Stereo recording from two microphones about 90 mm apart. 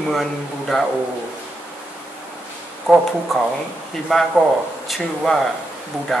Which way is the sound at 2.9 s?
5° right (ahead or behind).